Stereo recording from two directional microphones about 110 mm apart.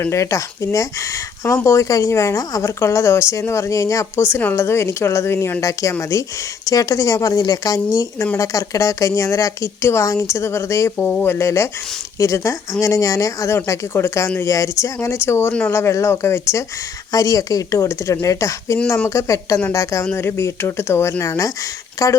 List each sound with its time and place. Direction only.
0.0 s a woman's voice: 25° left (ahead or behind)
10.9 s a woman's voice: 15° left (ahead or behind)